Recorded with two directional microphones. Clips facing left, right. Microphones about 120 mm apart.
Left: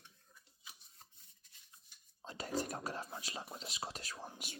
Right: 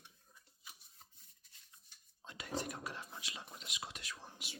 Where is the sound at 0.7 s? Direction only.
Centre (ahead or behind).